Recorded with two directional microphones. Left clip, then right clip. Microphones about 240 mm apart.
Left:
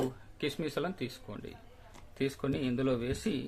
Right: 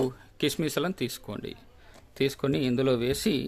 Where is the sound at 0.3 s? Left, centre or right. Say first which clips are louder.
Right 7 dB; right.